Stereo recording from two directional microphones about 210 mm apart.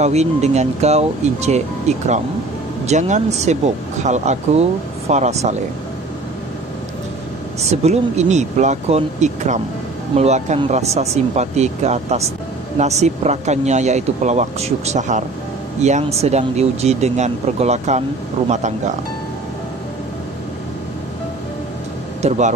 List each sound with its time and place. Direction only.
0.0 s speech: 30° right (ahead or behind)
7.8 s speech: 30° right (ahead or behind)
22.2 s speech: 30° right (ahead or behind)